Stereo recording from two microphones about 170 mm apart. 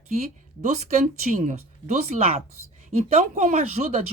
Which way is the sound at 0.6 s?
40° right (ahead or behind).